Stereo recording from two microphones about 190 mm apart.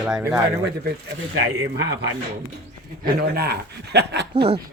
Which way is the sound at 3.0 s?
50° right (ahead or behind).